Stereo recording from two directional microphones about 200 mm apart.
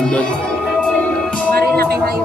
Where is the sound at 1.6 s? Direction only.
50° right (ahead or behind).